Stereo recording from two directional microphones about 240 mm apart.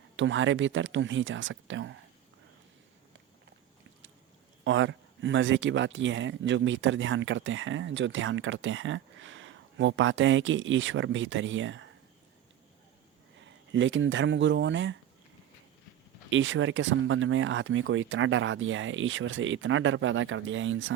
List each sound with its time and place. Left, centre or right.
0.2 s speech: right
4.6 s speech: right
13.4 s speech: right
16.3 s speech: right